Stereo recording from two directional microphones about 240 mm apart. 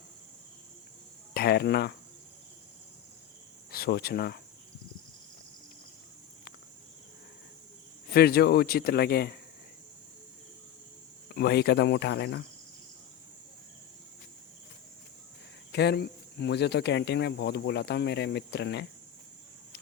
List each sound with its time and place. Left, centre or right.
1.3 s cricket: left
3.7 s speech: left
8.1 s speech: left
11.3 s speech: left
15.7 s speech: left